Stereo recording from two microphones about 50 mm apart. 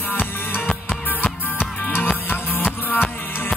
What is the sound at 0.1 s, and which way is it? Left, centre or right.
Music, left.